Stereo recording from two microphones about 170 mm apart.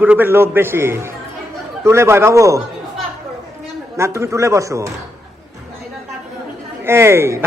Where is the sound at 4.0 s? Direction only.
15° right (ahead or behind).